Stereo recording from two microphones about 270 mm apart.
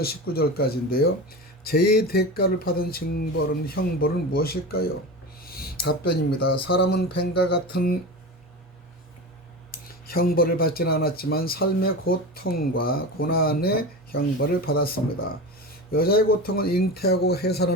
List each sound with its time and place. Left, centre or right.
0.0 s speech: left
5.4 s a sound: left
6.1 s speech: left
9.7 s speech: left